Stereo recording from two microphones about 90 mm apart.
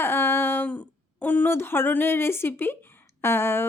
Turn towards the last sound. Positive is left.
turn(degrees=25)  # may be behind; listen again after turning